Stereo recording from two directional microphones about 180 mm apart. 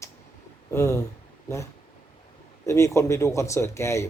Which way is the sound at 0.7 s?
15° left (ahead or behind).